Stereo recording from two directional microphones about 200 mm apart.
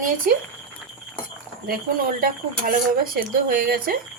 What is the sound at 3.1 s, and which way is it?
Speech, 50° right (ahead or behind).